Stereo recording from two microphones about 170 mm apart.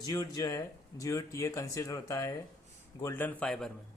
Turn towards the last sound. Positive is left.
turn(degrees=5)  # may be behind; listen again after turning